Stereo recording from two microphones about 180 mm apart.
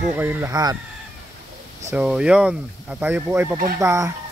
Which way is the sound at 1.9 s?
5° right (ahead or behind).